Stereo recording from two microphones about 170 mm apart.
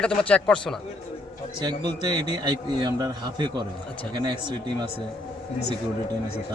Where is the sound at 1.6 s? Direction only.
25° right (ahead or behind).